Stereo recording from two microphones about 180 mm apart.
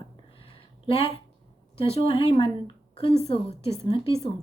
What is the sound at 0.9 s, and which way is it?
A woman's voice, 30° left (ahead or behind).